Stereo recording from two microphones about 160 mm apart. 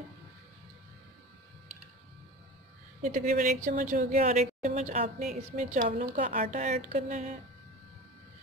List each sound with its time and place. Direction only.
3.2 s a woman's voice: 55° right (ahead or behind)